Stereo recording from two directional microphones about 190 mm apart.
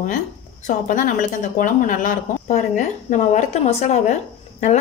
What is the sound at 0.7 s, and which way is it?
A woman's voice, 45° left (ahead or behind).